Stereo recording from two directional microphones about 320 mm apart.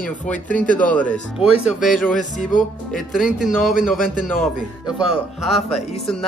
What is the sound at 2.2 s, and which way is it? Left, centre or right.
Music, left.